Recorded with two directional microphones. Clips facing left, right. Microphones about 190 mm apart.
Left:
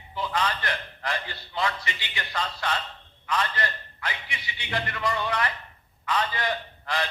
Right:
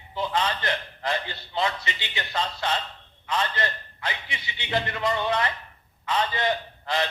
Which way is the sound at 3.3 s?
25° right (ahead or behind).